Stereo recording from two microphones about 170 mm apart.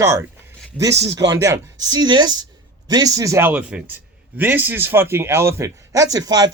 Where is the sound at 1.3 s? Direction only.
15° right (ahead or behind).